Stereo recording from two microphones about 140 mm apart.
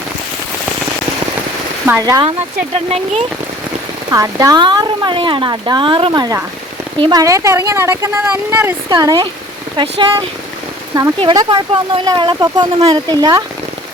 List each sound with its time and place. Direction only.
2.0 s speech: 25° right (ahead or behind)
2.9 s speech: 50° right (ahead or behind)
4.1 s speech: 25° right (ahead or behind)
11.2 s speech: 35° right (ahead or behind)